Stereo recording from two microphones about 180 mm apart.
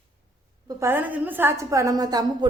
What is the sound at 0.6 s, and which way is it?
A woman's voice, 15° right (ahead or behind).